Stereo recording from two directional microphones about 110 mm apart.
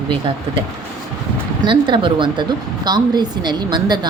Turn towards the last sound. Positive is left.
turn(degrees=-40)  # may be behind; listen again after turning